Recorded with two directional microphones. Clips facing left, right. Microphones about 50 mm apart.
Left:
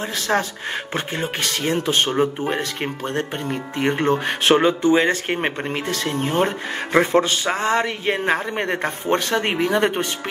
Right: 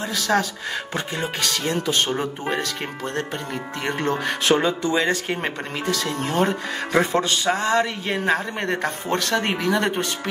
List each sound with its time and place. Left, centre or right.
0.1 s speech: left